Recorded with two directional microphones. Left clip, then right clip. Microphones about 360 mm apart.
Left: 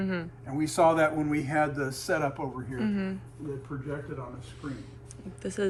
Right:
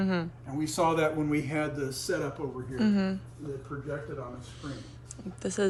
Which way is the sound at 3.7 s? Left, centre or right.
Left.